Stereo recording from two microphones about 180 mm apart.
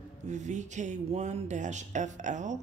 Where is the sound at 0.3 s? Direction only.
40° right (ahead or behind).